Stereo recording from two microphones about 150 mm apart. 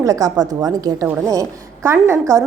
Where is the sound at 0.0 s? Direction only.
25° right (ahead or behind).